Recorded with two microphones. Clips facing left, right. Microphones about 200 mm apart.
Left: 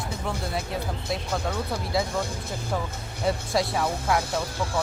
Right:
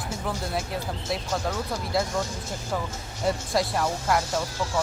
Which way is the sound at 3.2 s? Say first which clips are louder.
Even; centre (ahead or behind).